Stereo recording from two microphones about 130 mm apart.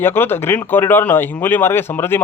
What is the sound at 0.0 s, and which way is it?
A man's voice, 15° left (ahead or behind).